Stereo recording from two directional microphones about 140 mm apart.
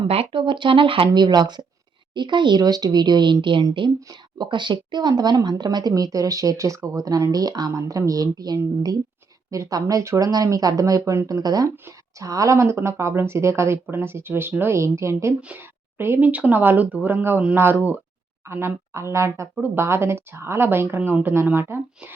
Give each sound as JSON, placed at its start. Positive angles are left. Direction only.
{"t": 0.1, "sound": "speech", "side_deg": -45}